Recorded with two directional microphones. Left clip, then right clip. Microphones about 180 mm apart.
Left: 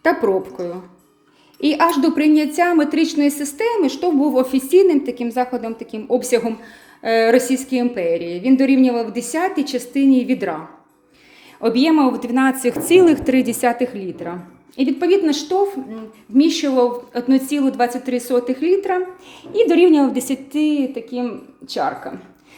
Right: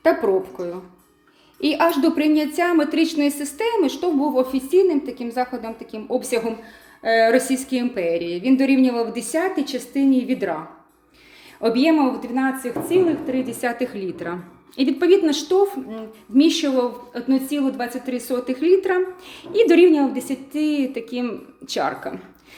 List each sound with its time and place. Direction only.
0.0 s a woman's voice: 20° left (ahead or behind)
11.6 s a woman's voice: 15° left (ahead or behind); by 13.5 s 50° left (ahead or behind)
13.5 s a woman's voice: 30° left (ahead or behind); by 19.9 s 5° left (ahead or behind)
19.9 s a woman's voice: 25° left (ahead or behind)
20.6 s a woman's voice: 5° left (ahead or behind)